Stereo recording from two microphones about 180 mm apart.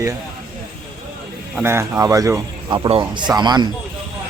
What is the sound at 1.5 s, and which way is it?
Speech, 15° right (ahead or behind).